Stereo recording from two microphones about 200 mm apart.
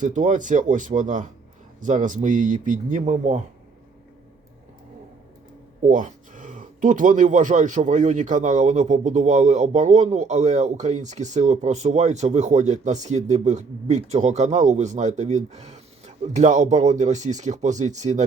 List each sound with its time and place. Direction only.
0.0 s speech: 40° right (ahead or behind)
5.9 s speech: 40° right (ahead or behind)